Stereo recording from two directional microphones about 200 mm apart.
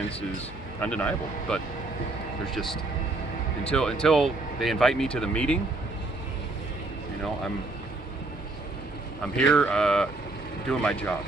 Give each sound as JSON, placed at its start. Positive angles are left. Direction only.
{"t": 0.7, "sound": "speech", "side_deg": 5}
{"t": 9.2, "sound": "speech", "side_deg": 5}